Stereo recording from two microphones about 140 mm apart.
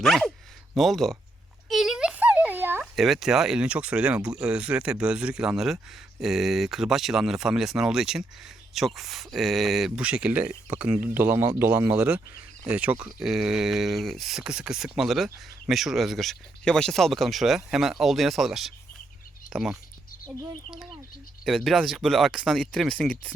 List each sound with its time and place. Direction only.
0.0 s speech: 5° left (ahead or behind)
1.7 s a sound: centre (ahead or behind)
2.9 s speech: centre (ahead or behind)
21.4 s speech: centre (ahead or behind)